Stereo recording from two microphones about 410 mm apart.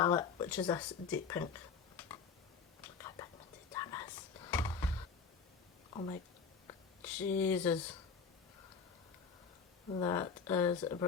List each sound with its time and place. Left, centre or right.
0.0 s speech: centre
2.8 s whispering: centre
5.9 s speech: centre
9.9 s speech: centre